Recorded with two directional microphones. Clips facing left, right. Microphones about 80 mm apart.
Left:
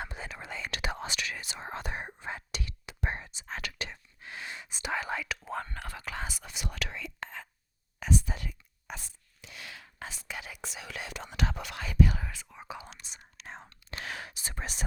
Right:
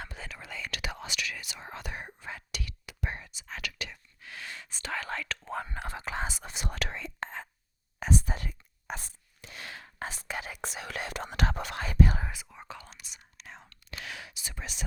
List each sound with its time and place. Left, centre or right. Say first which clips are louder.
0.0 s whispering: left 3 dB; left; by 5.6 s centre
5.6 s whispering: right 3 dB; centre; by 12.3 s right
12.6 s whispering: left 4 dB; centre
13.0 s whispering: left 2 dB; left